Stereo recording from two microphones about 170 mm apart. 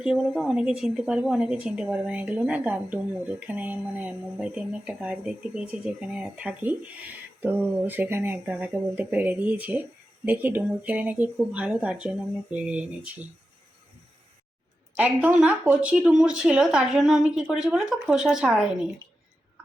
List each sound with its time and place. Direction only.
0.0 s speech: 5° right (ahead or behind)
14.9 s speech: 10° right (ahead or behind)